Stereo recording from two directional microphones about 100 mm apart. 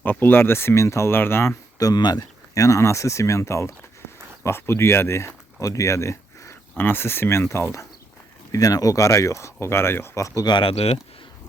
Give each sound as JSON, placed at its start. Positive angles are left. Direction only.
{"t": 0.0, "sound": "speech", "side_deg": 20}
{"t": 1.8, "sound": "speech", "side_deg": 45}
{"t": 2.6, "sound": "speech", "side_deg": 30}